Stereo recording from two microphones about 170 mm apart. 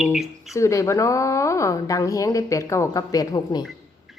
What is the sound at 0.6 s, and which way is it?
A woman's voice, 15° left (ahead or behind).